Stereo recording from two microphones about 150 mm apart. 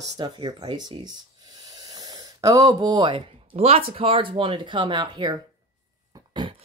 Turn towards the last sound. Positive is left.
turn(degrees=-30)  # may be behind; listen again after turning